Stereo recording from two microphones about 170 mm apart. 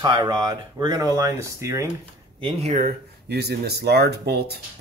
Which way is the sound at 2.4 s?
40° right (ahead or behind).